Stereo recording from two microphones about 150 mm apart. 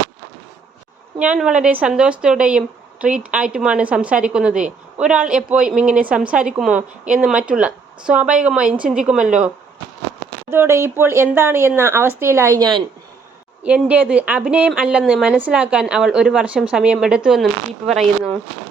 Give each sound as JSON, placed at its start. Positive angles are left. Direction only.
{"t": 1.2, "sound": "speech", "side_deg": -5}
{"t": 10.5, "sound": "speech", "side_deg": -15}
{"t": 13.7, "sound": "speech", "side_deg": -10}